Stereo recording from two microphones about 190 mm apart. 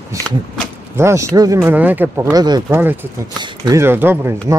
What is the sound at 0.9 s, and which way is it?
Speech, 15° right (ahead or behind).